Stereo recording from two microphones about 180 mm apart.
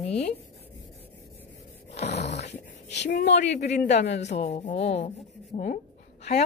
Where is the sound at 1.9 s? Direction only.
35° left (ahead or behind).